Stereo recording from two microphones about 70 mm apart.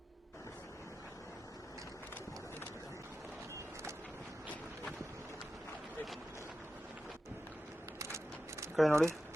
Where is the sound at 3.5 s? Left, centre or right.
Right.